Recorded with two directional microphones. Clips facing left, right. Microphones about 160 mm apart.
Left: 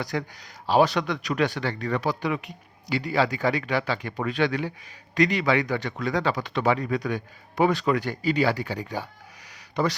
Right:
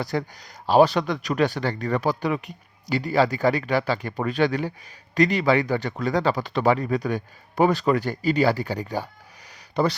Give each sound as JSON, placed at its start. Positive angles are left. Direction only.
{"t": 0.0, "sound": "speech", "side_deg": -35}